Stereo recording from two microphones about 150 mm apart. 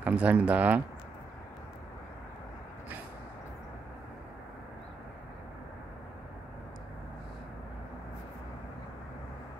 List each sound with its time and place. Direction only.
0.0 s speech: 10° right (ahead or behind)